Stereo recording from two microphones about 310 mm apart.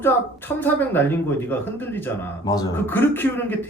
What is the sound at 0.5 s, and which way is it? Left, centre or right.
Speech, centre.